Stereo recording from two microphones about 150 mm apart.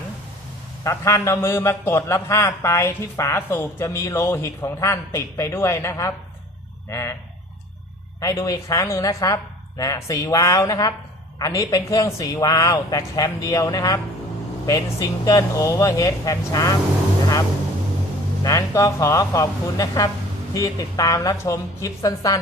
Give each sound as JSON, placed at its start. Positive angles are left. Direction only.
{"t": 0.9, "sound": "a man's voice", "side_deg": 20}
{"t": 8.2, "sound": "a man's voice", "side_deg": 20}
{"t": 18.4, "sound": "a man's voice", "side_deg": 20}